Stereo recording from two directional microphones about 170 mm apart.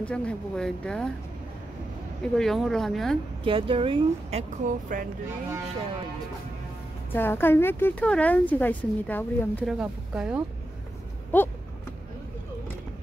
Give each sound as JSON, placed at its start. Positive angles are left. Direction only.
{"t": 0.0, "sound": "speech", "side_deg": 5}
{"t": 2.3, "sound": "speech", "side_deg": 0}
{"t": 3.4, "sound": "speech", "side_deg": -30}
{"t": 7.1, "sound": "speech", "side_deg": 10}
{"t": 9.7, "sound": "speech", "side_deg": -5}
{"t": 11.3, "sound": "speech", "side_deg": 10}